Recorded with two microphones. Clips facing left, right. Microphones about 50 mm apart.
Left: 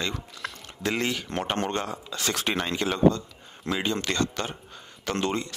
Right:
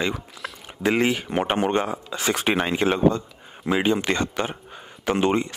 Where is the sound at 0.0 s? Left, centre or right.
Centre.